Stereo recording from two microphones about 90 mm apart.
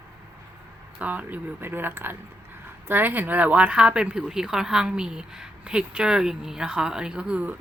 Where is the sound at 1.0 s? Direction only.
20° right (ahead or behind).